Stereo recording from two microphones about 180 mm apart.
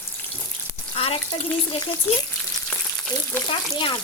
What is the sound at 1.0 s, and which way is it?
Speech, 30° left (ahead or behind).